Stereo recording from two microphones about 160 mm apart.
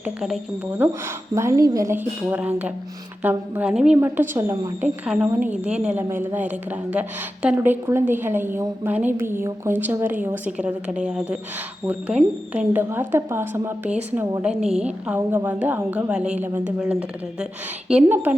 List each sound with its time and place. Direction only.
0.0 s a woman's voice: 5° right (ahead or behind)
1.4 s speech: 20° right (ahead or behind)
2.3 s a woman's voice: 10° right (ahead or behind)
5.0 s a woman's voice: 5° right (ahead or behind)